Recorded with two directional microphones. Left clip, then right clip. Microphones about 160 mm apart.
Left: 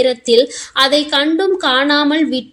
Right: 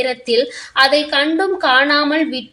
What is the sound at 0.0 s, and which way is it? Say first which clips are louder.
A woman's voice: left 5 dB; 50° left (ahead or behind).